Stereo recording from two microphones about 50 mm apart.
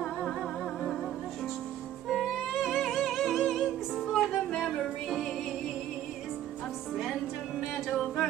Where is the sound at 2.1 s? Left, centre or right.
Centre.